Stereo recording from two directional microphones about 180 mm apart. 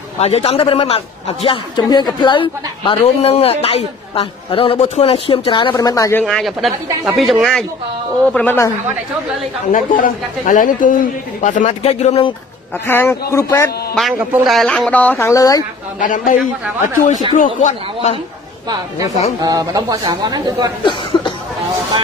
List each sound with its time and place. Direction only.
0.2 s a man's voice: 35° left (ahead or behind); by 6.2 s 15° left (ahead or behind)
6.2 s speech: centre (ahead or behind)
9.7 s a man's voice: 45° left (ahead or behind)
12.8 s speech: 15° left (ahead or behind)
14.4 s speech: centre (ahead or behind); by 15.6 s 20° left (ahead or behind)
16.0 s a man's voice: 45° left (ahead or behind)
18.7 s speech: 20° right (ahead or behind)
21.1 s a sound: 25° left (ahead or behind)